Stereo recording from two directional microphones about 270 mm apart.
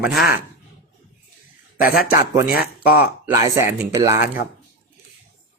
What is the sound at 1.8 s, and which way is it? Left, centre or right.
Speech, left.